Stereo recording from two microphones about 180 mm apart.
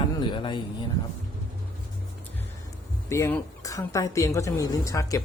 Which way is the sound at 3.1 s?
15° left (ahead or behind).